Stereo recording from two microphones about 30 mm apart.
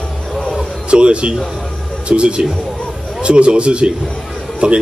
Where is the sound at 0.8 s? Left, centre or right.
Right.